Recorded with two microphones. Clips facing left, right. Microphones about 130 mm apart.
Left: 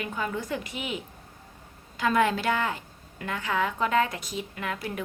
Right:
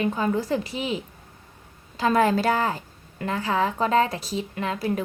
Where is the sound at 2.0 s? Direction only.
35° right (ahead or behind).